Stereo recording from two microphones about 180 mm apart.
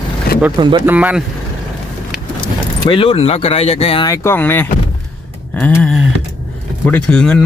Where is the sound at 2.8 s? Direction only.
30° left (ahead or behind).